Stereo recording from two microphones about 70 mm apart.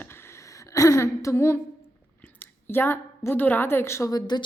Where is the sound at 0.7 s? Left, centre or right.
Left.